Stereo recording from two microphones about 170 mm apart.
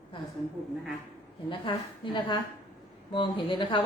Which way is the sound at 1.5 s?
30° left (ahead or behind).